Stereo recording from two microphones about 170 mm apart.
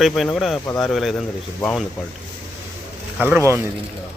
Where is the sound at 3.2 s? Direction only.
10° right (ahead or behind).